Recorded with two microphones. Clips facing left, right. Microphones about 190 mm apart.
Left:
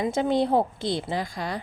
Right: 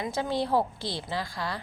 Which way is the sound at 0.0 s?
20° left (ahead or behind).